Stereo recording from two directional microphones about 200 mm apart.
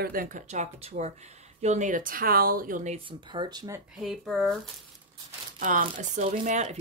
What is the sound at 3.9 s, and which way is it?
Speech, centre (ahead or behind).